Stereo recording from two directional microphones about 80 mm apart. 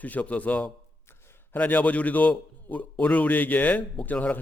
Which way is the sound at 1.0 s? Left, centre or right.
Left.